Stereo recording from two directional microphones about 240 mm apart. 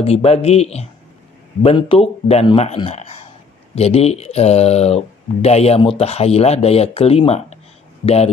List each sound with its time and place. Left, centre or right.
0.0 s speech: left